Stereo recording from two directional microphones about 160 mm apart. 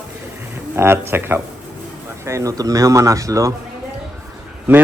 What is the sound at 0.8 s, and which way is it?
A man's voice, 15° right (ahead or behind).